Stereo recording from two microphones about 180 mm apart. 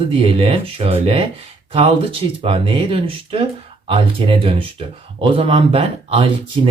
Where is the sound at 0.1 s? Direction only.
30° right (ahead or behind).